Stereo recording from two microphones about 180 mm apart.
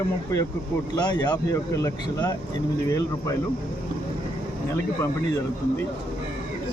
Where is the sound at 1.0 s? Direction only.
25° left (ahead or behind).